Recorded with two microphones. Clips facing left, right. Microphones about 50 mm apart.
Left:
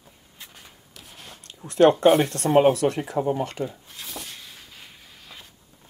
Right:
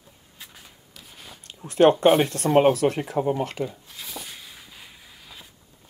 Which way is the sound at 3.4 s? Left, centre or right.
Centre.